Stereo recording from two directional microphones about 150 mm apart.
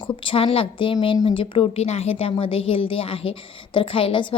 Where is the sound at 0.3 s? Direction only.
40° left (ahead or behind).